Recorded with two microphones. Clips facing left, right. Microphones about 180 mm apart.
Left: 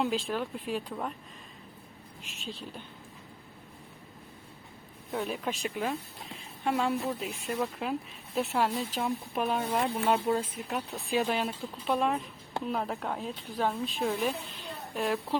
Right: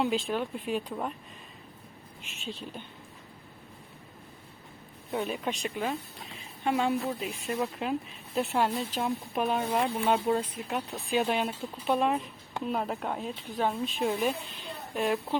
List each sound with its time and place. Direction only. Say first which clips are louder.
0.0 s speech: right 2 dB; centre (ahead or behind)
2.2 s speech: right 2 dB; centre (ahead or behind)
5.1 s speech: right 1 dB; centre (ahead or behind)